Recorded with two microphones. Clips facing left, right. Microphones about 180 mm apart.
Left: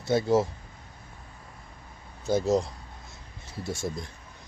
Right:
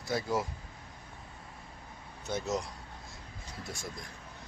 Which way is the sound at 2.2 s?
30° left (ahead or behind).